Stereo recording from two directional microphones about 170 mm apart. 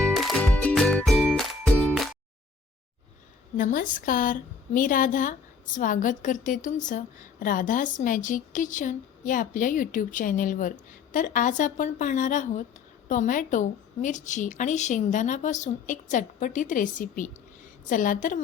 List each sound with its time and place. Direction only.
0.0 s music: centre (ahead or behind)
3.6 s a woman's voice: 55° left (ahead or behind)